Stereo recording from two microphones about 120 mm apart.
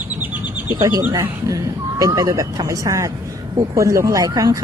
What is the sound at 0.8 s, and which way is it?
Speech, 25° right (ahead or behind).